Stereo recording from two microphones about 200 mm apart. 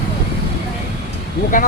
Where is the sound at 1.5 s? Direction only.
40° left (ahead or behind).